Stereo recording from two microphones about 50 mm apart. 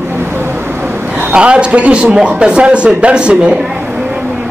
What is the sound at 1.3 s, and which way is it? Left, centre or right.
Speech, right.